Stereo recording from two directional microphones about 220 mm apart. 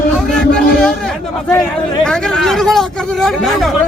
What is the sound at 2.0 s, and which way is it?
Speech, centre (ahead or behind).